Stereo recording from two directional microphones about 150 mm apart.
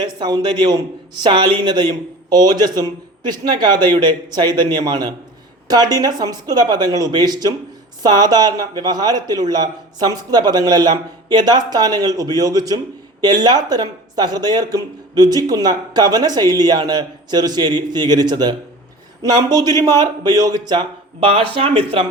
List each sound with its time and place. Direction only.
0.0 s a man's voice: 30° right (ahead or behind)